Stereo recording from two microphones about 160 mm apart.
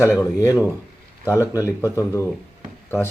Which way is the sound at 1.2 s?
20° left (ahead or behind).